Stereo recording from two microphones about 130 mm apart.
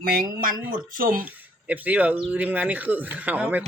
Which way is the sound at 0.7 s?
90° right.